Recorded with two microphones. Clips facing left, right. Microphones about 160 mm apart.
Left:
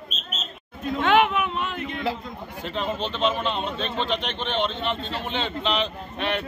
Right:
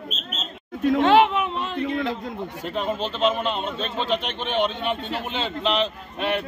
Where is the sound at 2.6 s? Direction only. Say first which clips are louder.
Right 1 dB; 10° right (ahead or behind).